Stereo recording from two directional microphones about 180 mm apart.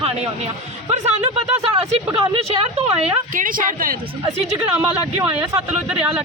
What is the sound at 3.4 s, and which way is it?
Speech, 50° right (ahead or behind).